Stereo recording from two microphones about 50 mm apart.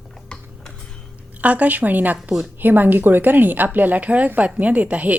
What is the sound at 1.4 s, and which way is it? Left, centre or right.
Speech, right.